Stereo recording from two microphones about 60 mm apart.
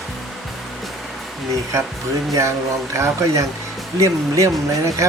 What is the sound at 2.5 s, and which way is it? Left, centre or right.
Speech, right.